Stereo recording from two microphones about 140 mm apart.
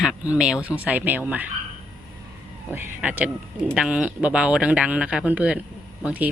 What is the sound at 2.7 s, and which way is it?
Speech, 10° right (ahead or behind).